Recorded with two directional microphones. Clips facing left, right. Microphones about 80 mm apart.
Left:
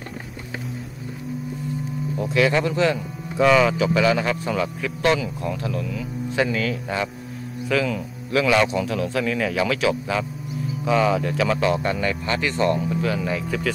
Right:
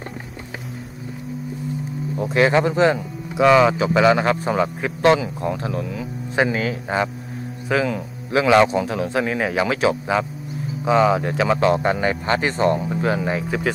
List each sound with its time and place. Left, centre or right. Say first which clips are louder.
2.1 s speech: right 3 dB; right
3.3 s speech: right 3 dB; centre
3.7 s a man's voice: right 3 dB; right